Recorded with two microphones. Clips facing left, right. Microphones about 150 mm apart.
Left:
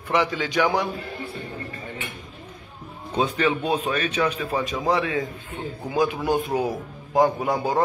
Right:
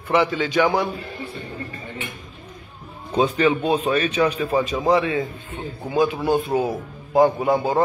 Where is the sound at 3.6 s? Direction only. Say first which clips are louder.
Right 3 dB; 35° right (ahead or behind).